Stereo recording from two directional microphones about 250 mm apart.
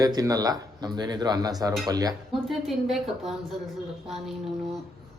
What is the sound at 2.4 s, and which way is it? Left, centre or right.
Speech, centre.